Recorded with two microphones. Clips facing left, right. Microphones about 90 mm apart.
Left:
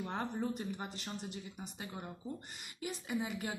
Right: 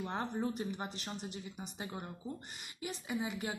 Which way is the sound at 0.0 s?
5° right (ahead or behind).